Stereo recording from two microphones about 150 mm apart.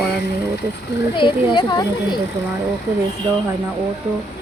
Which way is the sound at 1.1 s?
35° left (ahead or behind).